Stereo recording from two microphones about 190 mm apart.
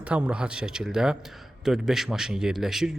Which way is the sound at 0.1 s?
5° right (ahead or behind).